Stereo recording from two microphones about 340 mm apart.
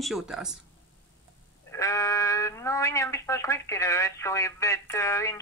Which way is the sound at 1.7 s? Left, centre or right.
Centre.